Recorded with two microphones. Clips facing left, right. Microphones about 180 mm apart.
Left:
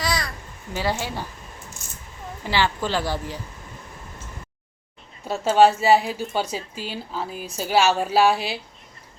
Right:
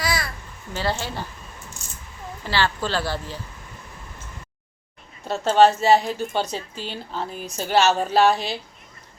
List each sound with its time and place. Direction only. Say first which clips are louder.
0.0 s babbling: even; 5° right (ahead or behind)
0.7 s speech: left 1 dB; 10° left (ahead or behind)
2.4 s speech: left 1 dB; 15° left (ahead or behind)
5.3 s speech: even; 10° left (ahead or behind)